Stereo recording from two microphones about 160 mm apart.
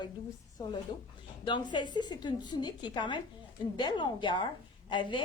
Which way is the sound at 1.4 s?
30° left (ahead or behind).